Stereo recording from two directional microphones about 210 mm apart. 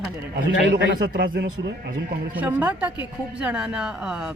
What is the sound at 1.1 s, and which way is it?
Speech, 45° right (ahead or behind).